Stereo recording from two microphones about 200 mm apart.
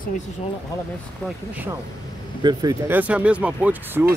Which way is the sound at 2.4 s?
20° right (ahead or behind).